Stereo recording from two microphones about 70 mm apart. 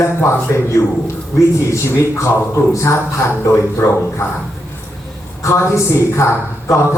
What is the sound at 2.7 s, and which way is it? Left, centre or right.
Speech, left.